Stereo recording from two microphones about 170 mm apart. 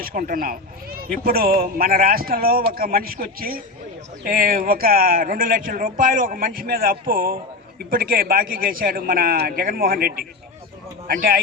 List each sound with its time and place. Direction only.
0.0 s speech: 55° right (ahead or behind)